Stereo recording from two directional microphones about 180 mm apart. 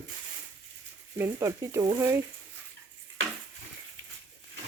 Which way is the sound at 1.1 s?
15° right (ahead or behind).